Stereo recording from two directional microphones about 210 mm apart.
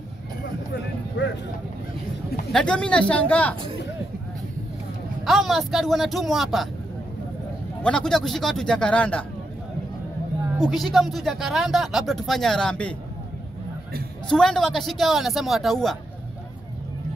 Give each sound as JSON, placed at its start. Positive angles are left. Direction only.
{"t": 1.1, "sound": "speech", "side_deg": 55}
{"t": 2.5, "sound": "speech", "side_deg": 5}
{"t": 5.2, "sound": "speech", "side_deg": 0}
{"t": 7.8, "sound": "speech", "side_deg": 5}
{"t": 10.6, "sound": "speech", "side_deg": 0}
{"t": 14.3, "sound": "speech", "side_deg": 5}